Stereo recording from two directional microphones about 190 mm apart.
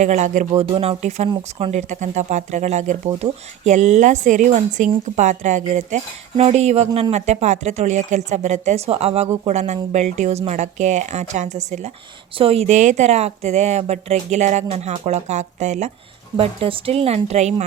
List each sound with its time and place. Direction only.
0.0 s speech: 40° right (ahead or behind)